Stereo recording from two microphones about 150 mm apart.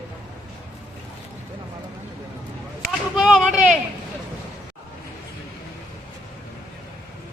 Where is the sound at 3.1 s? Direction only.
5° right (ahead or behind).